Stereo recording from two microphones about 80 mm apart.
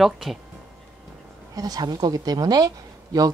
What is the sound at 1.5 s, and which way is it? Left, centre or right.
Speech, right.